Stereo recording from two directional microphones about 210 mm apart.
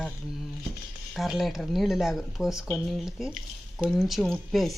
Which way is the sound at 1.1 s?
Centre (ahead or behind).